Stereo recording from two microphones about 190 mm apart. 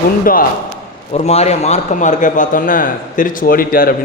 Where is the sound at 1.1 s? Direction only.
35° left (ahead or behind).